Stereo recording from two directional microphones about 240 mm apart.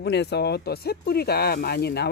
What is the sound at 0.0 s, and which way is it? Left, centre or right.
Speech, left.